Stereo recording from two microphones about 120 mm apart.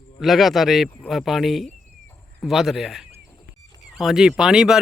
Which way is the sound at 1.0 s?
10° left (ahead or behind).